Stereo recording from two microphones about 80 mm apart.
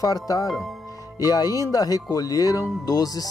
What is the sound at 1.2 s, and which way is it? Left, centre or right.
Speech, left.